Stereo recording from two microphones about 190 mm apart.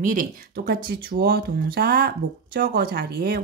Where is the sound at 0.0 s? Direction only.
45° right (ahead or behind).